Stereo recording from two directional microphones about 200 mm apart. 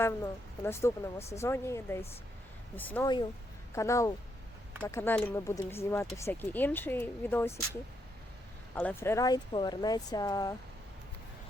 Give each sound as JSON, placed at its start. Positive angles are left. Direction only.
{"t": 0.0, "sound": "speech", "side_deg": 10}
{"t": 8.7, "sound": "speech", "side_deg": 10}